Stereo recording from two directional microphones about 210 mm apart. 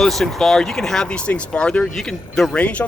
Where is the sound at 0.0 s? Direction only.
Centre (ahead or behind).